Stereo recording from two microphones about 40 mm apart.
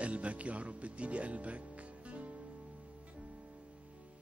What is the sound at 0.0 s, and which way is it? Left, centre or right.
Music, right.